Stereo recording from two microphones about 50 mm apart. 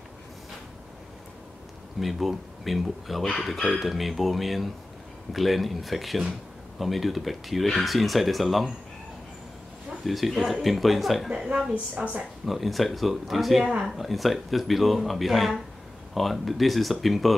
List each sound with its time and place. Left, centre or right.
2.0 s speech: centre
10.0 s speech: centre
11.2 s a woman's voice: centre
11.7 s a woman's voice: right
12.4 s speech: centre